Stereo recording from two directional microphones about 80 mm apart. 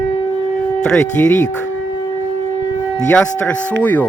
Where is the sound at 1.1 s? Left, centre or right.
Left.